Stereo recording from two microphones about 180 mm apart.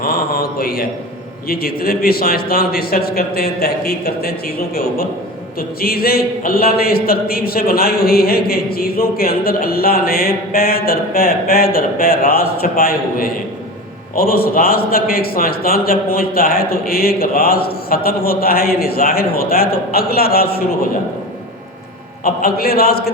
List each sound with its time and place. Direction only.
0.0 s mantra: 55° left (ahead or behind)
1.5 s a man's voice: 55° left (ahead or behind)
22.2 s a man's voice: 55° left (ahead or behind)